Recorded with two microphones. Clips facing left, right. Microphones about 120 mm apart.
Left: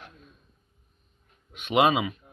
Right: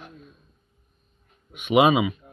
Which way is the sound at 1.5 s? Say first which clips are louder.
Right 4 dB; 10° right (ahead or behind).